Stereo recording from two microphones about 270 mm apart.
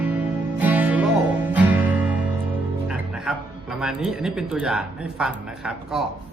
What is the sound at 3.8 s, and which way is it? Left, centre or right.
Speech, centre.